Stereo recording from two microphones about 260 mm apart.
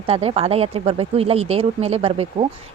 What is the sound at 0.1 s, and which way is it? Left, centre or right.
Speech, right.